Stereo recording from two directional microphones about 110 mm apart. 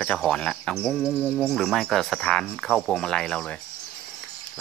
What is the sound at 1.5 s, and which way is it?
Speech, centre (ahead or behind).